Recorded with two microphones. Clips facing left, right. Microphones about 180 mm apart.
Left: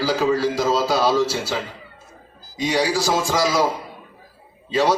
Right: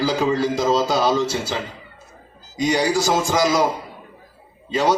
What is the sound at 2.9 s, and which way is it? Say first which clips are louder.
Speech: right 1 dB; 20° right (ahead or behind).